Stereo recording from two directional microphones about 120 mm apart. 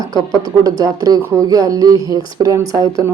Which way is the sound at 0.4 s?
30° right (ahead or behind).